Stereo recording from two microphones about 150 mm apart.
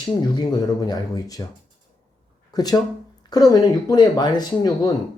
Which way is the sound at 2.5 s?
25° left (ahead or behind).